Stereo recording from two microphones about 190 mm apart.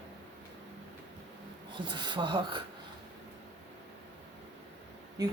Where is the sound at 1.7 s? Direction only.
25° right (ahead or behind).